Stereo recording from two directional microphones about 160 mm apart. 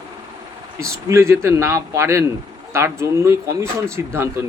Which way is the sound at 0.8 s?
15° right (ahead or behind).